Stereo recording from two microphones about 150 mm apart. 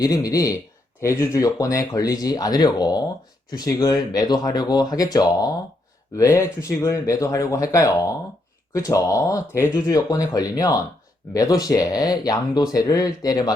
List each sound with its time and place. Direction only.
0.0 s speech: 25° left (ahead or behind)